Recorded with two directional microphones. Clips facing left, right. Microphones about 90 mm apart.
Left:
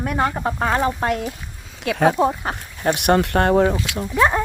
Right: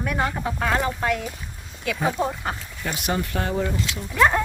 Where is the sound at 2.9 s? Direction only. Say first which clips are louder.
Left 8 dB; 65° left (ahead or behind).